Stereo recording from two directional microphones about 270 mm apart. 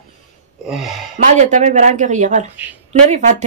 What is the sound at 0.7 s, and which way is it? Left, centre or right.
Speech, centre.